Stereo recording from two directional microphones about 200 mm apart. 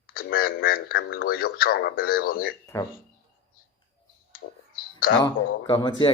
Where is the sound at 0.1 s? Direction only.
45° left (ahead or behind).